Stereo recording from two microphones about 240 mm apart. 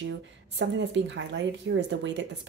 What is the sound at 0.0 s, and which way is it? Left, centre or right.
Speech, right.